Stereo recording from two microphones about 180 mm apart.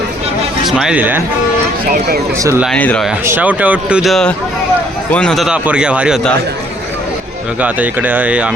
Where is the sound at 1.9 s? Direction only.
60° right (ahead or behind).